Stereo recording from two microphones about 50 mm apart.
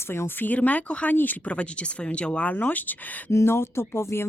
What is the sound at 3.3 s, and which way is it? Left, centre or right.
Speech, left.